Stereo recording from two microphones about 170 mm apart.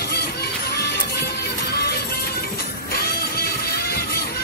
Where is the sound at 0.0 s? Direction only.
70° left (ahead or behind).